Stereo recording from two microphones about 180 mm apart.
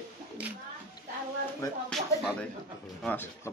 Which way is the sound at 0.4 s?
5° right (ahead or behind).